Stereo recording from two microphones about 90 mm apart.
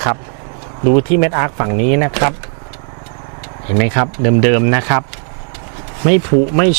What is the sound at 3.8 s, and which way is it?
Speech, 20° right (ahead or behind).